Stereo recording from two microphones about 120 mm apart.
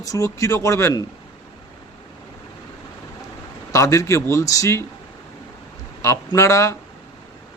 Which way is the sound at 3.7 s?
25° left (ahead or behind).